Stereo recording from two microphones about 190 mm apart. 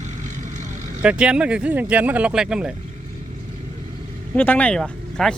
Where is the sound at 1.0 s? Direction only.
5° right (ahead or behind).